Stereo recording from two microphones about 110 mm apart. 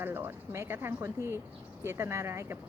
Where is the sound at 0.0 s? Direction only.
20° right (ahead or behind).